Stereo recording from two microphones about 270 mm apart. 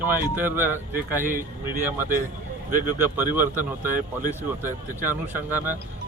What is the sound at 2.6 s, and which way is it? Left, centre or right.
Speech, right.